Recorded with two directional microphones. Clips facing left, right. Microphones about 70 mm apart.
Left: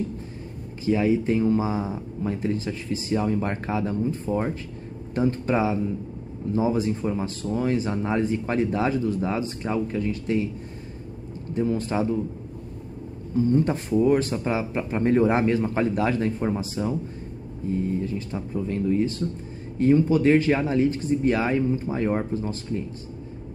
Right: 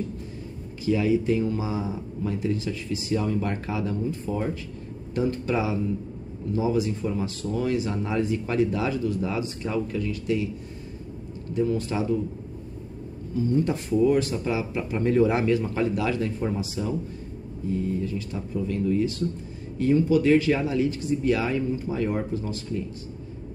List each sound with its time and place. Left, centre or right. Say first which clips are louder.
0.8 s speech: left 1 dB; left
11.5 s speech: left 1 dB; left
13.3 s speech: left 3 dB; left